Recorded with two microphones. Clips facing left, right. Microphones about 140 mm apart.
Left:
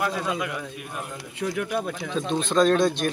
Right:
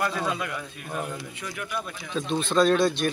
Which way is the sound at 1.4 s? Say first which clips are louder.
Left 9 dB; 90° left.